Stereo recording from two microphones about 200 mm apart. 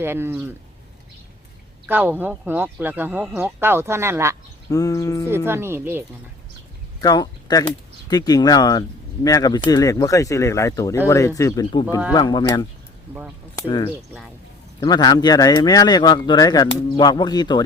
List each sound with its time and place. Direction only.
0.0 s speech: 10° right (ahead or behind)
1.9 s speech: 10° right (ahead or behind)
4.7 s speech: 15° left (ahead or behind)
5.5 s speech: 10° right (ahead or behind)
7.0 s speech: 20° left (ahead or behind)